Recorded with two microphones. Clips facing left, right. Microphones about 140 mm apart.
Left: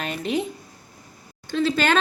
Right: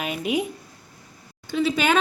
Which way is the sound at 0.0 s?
10° right (ahead or behind).